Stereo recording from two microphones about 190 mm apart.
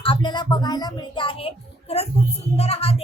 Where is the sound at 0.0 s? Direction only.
25° left (ahead or behind).